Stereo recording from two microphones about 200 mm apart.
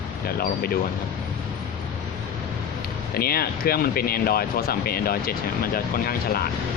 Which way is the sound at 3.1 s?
50° left (ahead or behind).